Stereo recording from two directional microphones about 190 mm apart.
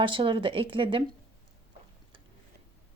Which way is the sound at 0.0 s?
25° right (ahead or behind).